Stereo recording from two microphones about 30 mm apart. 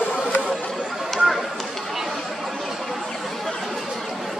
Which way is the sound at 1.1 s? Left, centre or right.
Centre.